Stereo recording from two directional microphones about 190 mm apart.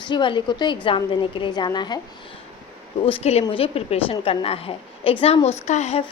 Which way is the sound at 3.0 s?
30° left (ahead or behind).